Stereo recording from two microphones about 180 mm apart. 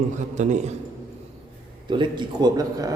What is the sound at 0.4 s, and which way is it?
Speech, 45° right (ahead or behind).